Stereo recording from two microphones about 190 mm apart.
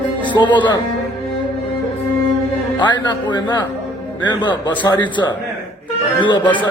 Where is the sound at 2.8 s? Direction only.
25° left (ahead or behind).